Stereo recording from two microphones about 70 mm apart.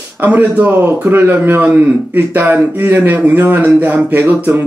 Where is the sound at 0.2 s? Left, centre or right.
Right.